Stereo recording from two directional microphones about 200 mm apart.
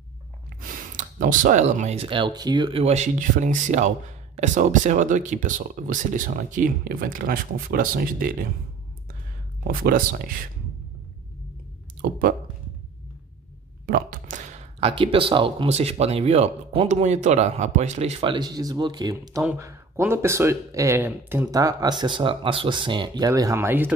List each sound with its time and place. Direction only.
0.6 s speech: 45° right (ahead or behind)
9.7 s speech: 45° right (ahead or behind)
12.0 s speech: 45° right (ahead or behind)
13.8 s speech: 45° right (ahead or behind); by 23.9 s 10° right (ahead or behind)